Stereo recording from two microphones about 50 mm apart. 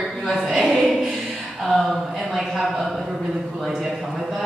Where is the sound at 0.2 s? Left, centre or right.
Centre.